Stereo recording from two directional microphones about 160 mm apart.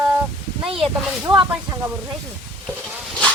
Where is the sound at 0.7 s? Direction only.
Centre (ahead or behind).